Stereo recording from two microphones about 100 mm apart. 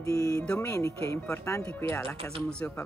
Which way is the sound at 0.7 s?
30° left (ahead or behind).